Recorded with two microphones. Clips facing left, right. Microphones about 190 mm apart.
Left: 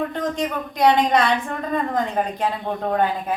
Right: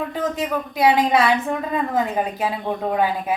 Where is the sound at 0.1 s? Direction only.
5° right (ahead or behind).